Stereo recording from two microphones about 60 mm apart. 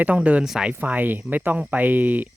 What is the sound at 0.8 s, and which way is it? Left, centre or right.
Speech, right.